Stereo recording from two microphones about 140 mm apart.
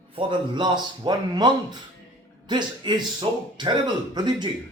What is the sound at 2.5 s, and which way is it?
A man's voice, 35° right (ahead or behind).